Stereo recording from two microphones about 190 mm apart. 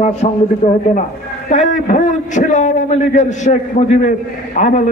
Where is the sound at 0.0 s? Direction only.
35° left (ahead or behind).